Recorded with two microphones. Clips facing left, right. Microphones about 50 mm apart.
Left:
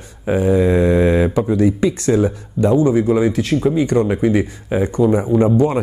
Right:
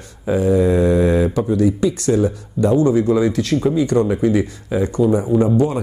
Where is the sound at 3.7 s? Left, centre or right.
Left.